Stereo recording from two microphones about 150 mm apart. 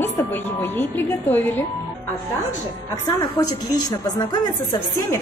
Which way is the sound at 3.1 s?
25° left (ahead or behind).